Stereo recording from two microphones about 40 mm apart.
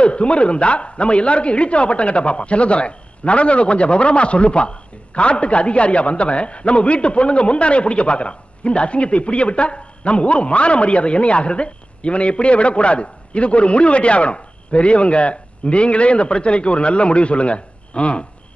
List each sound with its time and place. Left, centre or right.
0.0 s a man's voice: left